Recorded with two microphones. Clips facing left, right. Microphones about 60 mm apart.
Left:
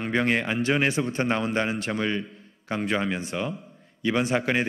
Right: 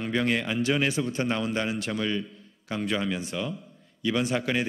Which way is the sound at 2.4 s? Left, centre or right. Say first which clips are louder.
Left 3 dB; left.